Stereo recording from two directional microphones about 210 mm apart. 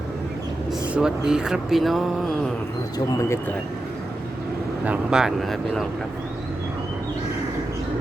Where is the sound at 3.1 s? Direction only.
15° left (ahead or behind).